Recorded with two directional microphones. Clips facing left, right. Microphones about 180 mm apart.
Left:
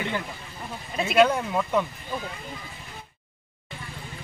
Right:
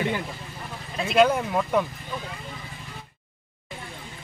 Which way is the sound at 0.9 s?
5° left (ahead or behind).